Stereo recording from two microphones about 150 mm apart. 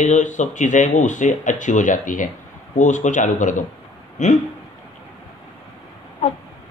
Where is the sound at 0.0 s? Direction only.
50° left (ahead or behind).